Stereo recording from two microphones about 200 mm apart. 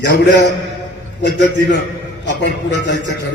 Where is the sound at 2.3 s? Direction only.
60° left (ahead or behind).